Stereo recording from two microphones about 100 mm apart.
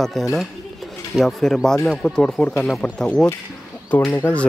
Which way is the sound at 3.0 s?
15° left (ahead or behind).